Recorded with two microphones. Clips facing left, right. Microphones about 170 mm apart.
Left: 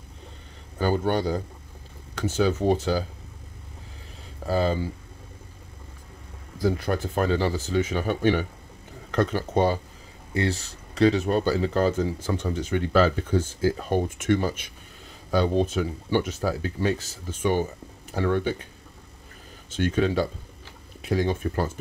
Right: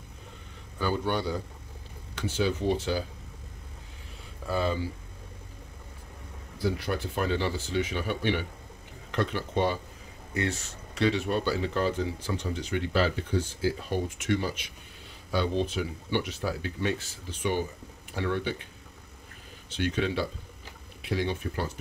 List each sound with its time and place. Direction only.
0.7 s speech: 45° left (ahead or behind)
4.5 s speech: 35° left (ahead or behind)
6.6 s speech: 45° left (ahead or behind)
19.7 s speech: 45° left (ahead or behind)